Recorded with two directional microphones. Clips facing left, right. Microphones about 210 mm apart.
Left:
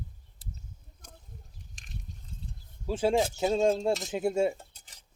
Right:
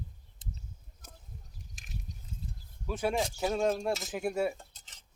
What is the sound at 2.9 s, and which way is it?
Speech, 25° left (ahead or behind).